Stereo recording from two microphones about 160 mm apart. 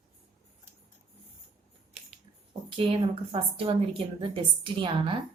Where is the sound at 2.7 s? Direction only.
35° right (ahead or behind).